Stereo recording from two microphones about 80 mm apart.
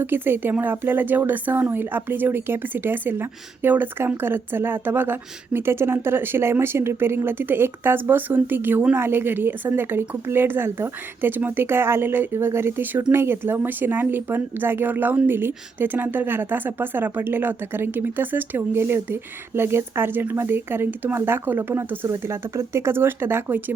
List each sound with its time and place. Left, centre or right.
0.0 s speech: right